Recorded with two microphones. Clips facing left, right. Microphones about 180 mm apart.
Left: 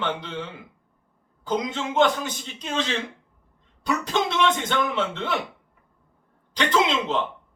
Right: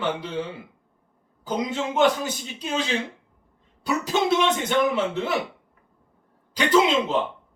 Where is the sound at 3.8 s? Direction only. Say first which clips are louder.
Right 1 dB; 10° right (ahead or behind).